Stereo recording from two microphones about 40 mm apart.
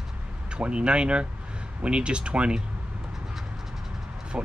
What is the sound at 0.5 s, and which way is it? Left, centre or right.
Speech, right.